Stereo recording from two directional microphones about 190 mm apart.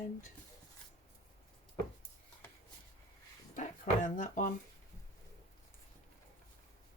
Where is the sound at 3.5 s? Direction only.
40° left (ahead or behind).